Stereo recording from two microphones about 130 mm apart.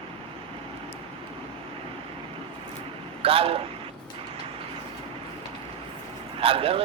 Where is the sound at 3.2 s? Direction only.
45° right (ahead or behind).